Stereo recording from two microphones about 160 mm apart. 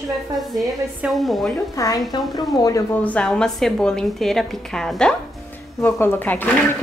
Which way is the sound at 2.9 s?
10° left (ahead or behind).